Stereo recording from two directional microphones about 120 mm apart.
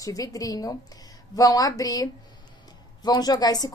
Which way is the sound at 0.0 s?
30° left (ahead or behind).